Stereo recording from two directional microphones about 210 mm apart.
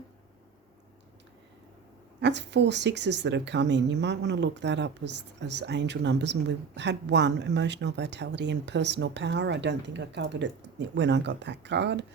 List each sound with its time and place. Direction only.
2.2 s speech: 55° right (ahead or behind)